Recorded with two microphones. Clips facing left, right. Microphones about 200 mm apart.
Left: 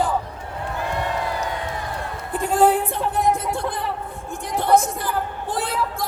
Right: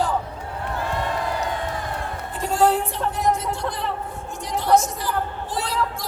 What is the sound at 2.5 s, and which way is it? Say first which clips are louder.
Speech: left 2 dB; 55° left (ahead or behind).